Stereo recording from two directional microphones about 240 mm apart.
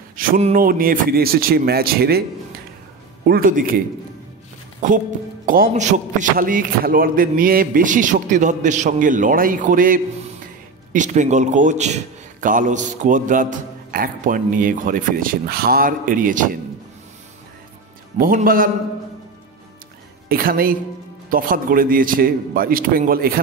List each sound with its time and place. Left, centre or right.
0.1 s a man's voice: right
3.3 s a man's voice: right
4.9 s a man's voice: right
18.1 s a man's voice: right
20.2 s a man's voice: right